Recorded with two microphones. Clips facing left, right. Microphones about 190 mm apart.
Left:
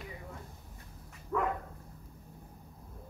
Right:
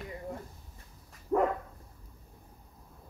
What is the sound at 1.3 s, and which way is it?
Dog, 35° right (ahead or behind).